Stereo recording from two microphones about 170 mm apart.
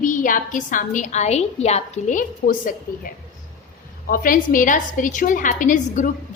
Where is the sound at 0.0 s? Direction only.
50° left (ahead or behind).